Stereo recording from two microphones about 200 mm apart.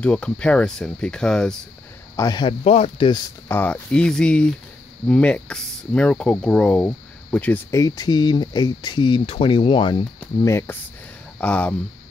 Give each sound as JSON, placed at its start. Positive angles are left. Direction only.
{"t": 0.0, "sound": "speech", "side_deg": 5}
{"t": 2.1, "sound": "speech", "side_deg": 20}
{"t": 3.4, "sound": "speech", "side_deg": 10}
{"t": 10.2, "sound": "speech", "side_deg": 10}